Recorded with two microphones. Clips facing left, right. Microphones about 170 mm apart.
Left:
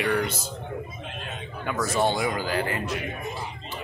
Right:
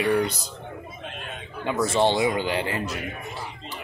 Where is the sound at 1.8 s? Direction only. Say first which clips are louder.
Right 3 dB; 25° right (ahead or behind).